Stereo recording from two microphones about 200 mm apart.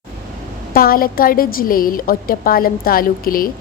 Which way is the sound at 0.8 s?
45° left (ahead or behind).